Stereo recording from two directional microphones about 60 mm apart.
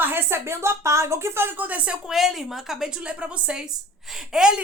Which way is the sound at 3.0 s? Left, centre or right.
Centre.